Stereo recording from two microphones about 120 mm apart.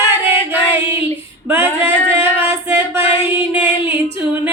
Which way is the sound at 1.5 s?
20° right (ahead or behind).